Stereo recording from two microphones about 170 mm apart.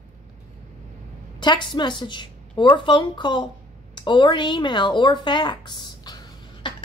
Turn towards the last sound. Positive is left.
turn(degrees=30)  # may be behind; listen again after turning